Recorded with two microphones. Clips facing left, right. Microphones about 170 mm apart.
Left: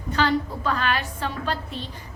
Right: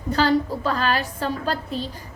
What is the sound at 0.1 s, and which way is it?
A woman's voice, 35° right (ahead or behind).